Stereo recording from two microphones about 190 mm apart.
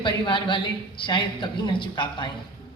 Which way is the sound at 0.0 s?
25° left (ahead or behind).